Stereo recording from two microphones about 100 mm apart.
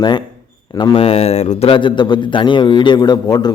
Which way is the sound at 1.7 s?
55° left (ahead or behind).